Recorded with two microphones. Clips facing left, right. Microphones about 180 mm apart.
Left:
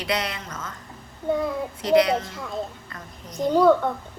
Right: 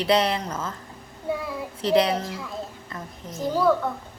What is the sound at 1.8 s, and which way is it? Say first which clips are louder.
Speech: left 2 dB; 30° right (ahead or behind).